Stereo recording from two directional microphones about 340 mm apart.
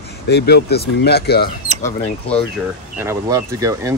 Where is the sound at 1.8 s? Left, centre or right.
Centre.